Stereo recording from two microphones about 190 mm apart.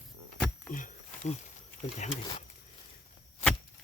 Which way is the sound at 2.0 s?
40° left (ahead or behind).